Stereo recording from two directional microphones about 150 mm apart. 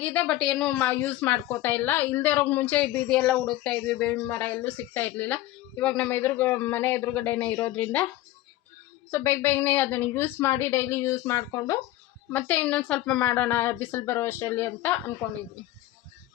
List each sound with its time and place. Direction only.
0.0 s speech: 10° left (ahead or behind)
12.3 s speech: 10° left (ahead or behind)